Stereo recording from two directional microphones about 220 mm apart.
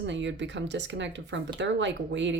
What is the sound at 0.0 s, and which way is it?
Speech, 55° right (ahead or behind).